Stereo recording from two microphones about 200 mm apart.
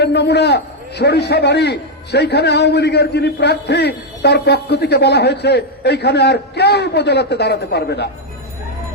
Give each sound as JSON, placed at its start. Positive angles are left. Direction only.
{"t": 0.0, "sound": "a man's voice", "side_deg": 55}